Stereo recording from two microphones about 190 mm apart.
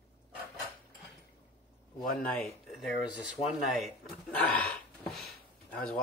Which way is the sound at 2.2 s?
5° left (ahead or behind).